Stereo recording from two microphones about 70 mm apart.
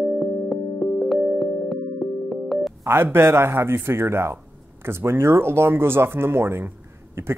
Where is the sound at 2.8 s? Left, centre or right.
Right.